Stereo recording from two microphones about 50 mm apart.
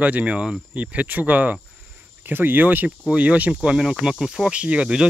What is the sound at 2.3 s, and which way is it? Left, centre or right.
Speech, right.